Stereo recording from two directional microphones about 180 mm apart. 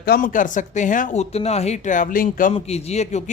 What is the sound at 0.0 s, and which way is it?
Speech, 55° left (ahead or behind).